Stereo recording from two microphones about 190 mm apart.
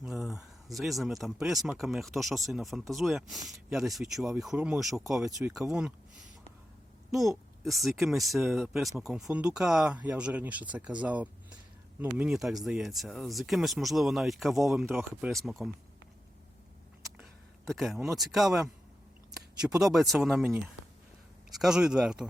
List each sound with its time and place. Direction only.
0.0 s speech: centre (ahead or behind)
7.1 s speech: centre (ahead or behind)
15.3 s speech: centre (ahead or behind)
17.7 s speech: centre (ahead or behind)
19.8 s speech: centre (ahead or behind)
21.5 s speech: centre (ahead or behind)